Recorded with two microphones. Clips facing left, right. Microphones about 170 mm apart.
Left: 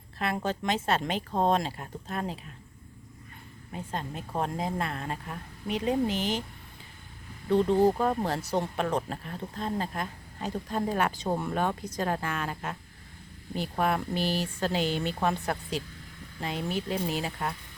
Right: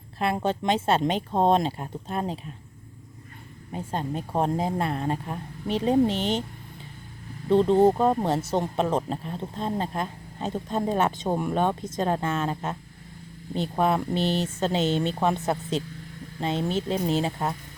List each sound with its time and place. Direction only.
0.2 s speech: 30° right (ahead or behind)
3.7 s speech: 30° right (ahead or behind)
7.5 s speech: 25° right (ahead or behind)